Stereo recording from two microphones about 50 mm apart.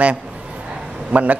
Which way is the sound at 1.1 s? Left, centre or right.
Right.